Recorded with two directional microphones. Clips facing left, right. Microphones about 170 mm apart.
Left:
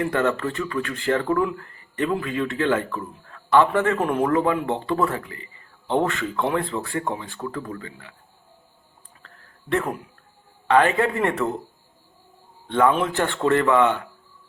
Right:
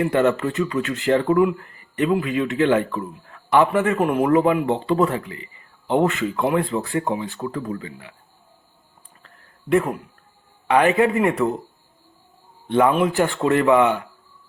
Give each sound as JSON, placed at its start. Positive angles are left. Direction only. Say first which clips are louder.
{"t": 0.0, "sound": "speech", "louder": "right 4 dB", "side_deg": -20}
{"t": 9.2, "sound": "a sound", "louder": "right 7 dB", "side_deg": -10}
{"t": 10.7, "sound": "speech", "louder": "right 2 dB", "side_deg": -15}
{"t": 12.6, "sound": "a man's voice", "louder": "right 2 dB", "side_deg": -15}